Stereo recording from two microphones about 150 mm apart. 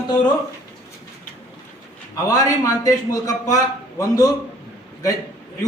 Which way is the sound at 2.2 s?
25° left (ahead or behind).